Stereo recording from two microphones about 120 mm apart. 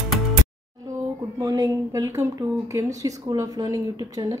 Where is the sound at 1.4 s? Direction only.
30° right (ahead or behind).